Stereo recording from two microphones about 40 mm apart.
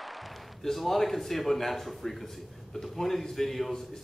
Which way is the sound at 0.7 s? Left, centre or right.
Centre.